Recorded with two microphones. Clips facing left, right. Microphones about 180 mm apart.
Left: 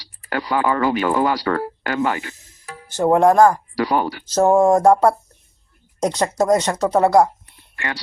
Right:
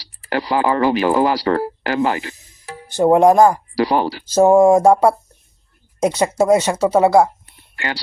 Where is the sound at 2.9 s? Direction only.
15° right (ahead or behind).